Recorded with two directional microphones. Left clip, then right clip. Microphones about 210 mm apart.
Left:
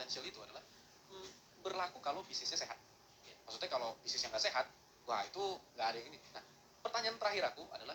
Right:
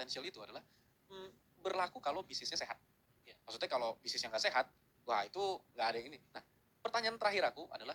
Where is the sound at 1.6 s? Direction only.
35° right (ahead or behind).